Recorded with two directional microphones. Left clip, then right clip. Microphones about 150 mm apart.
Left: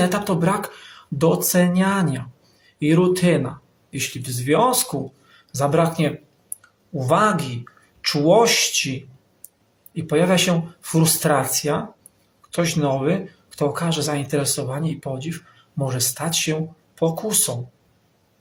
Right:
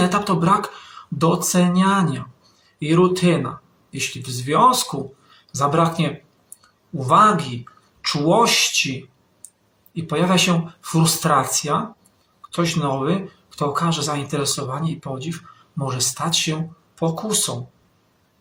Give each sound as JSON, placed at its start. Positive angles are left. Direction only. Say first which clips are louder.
{"t": 0.0, "sound": "speech", "louder": "right 1 dB", "side_deg": 25}
{"t": 7.1, "sound": "speech", "louder": "right 4 dB", "side_deg": 25}
{"t": 9.9, "sound": "speech", "louder": "left 1 dB", "side_deg": 25}